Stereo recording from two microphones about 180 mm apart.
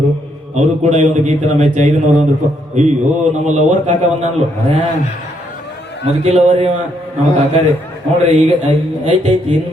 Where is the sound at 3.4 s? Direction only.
40° right (ahead or behind).